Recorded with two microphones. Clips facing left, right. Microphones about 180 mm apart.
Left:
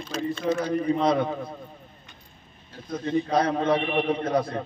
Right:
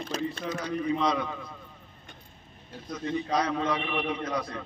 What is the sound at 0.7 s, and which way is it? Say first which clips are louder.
Speech: left 2 dB; 50° left (ahead or behind).